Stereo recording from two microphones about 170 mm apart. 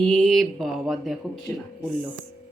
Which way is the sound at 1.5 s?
10° left (ahead or behind).